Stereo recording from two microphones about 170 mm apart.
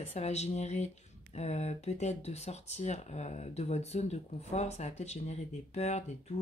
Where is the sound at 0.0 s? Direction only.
40° left (ahead or behind).